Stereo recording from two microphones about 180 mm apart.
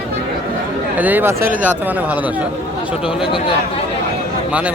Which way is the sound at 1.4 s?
50° right (ahead or behind).